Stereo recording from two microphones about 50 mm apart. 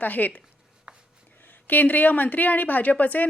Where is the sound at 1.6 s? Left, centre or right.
Left.